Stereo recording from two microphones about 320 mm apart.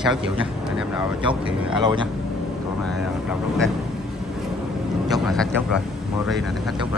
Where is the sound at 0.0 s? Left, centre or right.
Centre.